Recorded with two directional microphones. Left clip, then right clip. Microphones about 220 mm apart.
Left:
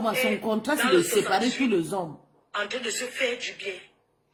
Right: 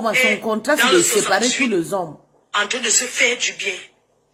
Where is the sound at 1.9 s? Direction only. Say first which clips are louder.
Right 8 dB; 25° right (ahead or behind).